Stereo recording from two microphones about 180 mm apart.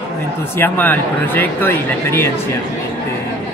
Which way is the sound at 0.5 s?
10° left (ahead or behind).